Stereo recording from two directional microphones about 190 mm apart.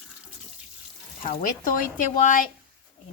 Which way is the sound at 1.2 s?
45° left (ahead or behind).